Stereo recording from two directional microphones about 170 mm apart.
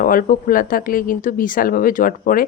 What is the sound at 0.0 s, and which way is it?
Speech, 55° left (ahead or behind).